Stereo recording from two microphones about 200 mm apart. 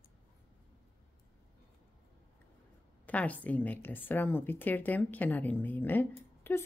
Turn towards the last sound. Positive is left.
turn(degrees=10)  # may be behind; listen again after turning